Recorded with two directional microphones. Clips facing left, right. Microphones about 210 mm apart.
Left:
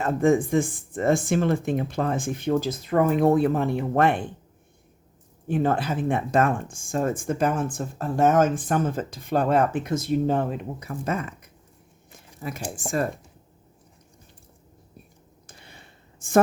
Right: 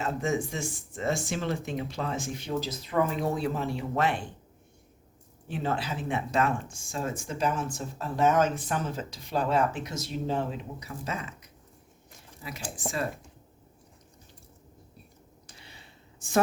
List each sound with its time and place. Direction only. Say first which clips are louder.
0.0 s speech: left 9 dB; 55° left (ahead or behind)
5.5 s speech: left 8 dB; 50° left (ahead or behind)
12.4 s speech: left 7 dB; 50° left (ahead or behind)
15.4 s a sound: left 4 dB; 50° left (ahead or behind)